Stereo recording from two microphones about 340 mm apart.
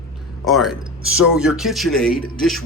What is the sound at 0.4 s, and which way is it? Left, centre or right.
Speech, centre.